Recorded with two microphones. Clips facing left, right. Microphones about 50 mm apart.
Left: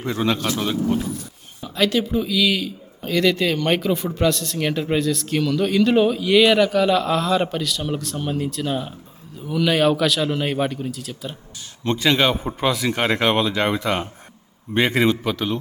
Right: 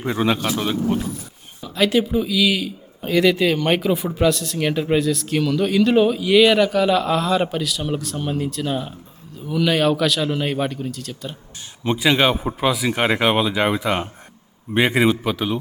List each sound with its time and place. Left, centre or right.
0.0 s speech: centre
11.8 s speech: centre